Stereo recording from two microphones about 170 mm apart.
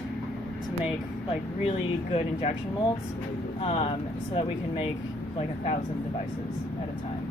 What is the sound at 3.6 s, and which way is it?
Speech, 35° left (ahead or behind).